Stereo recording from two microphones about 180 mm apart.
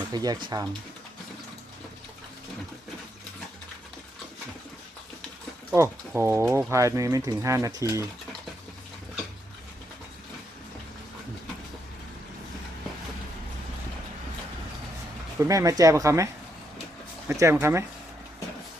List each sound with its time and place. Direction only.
0.1 s speech: 20° right (ahead or behind)
5.7 s speech: 15° right (ahead or behind)
15.4 s speech: 20° right (ahead or behind)